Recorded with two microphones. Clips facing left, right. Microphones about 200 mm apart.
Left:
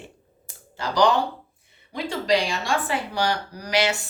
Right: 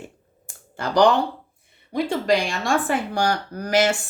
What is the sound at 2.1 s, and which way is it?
A woman's voice, 55° right (ahead or behind).